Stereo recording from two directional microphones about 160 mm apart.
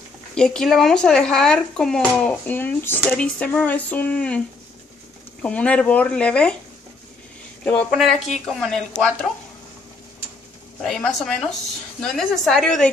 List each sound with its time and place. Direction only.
0.3 s speech: 5° left (ahead or behind)
5.4 s speech: 10° left (ahead or behind)
7.9 s speech: centre (ahead or behind)
10.8 s speech: 5° left (ahead or behind)